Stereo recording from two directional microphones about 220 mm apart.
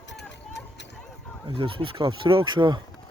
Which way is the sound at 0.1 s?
50° left (ahead or behind).